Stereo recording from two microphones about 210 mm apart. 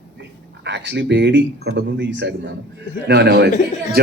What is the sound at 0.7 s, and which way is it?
A man's voice, 55° right (ahead or behind).